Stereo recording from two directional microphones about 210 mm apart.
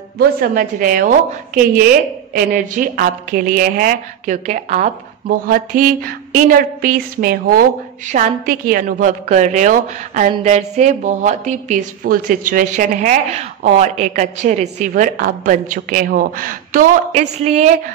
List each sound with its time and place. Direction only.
0.2 s a woman's voice: 45° right (ahead or behind)